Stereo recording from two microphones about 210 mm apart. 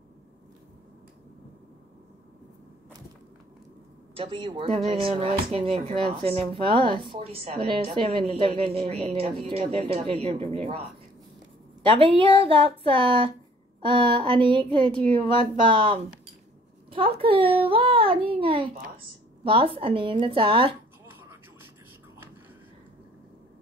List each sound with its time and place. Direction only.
4.1 s speech: 25° right (ahead or behind)
11.8 s speech: 25° right (ahead or behind)